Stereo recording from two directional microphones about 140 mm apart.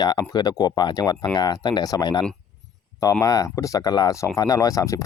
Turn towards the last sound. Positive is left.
turn(degrees=25)  # may be behind; listen again after turning